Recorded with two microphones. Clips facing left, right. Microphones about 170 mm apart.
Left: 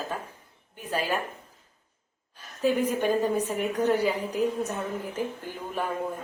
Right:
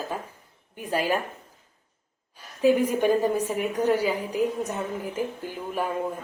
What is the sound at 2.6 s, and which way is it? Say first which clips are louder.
A woman's voice: right 4 dB; 10° right (ahead or behind).